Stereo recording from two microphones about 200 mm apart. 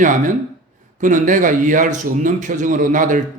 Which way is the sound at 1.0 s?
40° right (ahead or behind).